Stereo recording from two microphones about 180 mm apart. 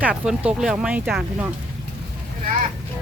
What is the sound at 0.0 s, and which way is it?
Speech, 5° right (ahead or behind).